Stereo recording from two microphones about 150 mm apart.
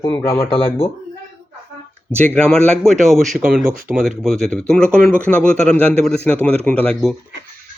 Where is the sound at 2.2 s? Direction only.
10° left (ahead or behind).